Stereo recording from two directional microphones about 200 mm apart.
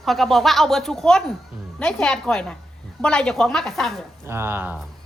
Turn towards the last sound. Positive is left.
turn(degrees=-10)  # may be behind; listen again after turning